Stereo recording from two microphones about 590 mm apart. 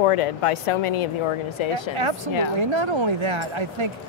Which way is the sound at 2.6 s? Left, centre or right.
Right.